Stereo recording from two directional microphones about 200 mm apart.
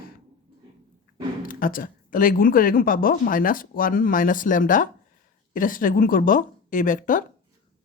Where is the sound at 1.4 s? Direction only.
45° left (ahead or behind).